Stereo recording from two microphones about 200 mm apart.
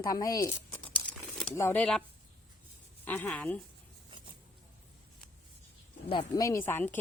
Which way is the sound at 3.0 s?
10° left (ahead or behind).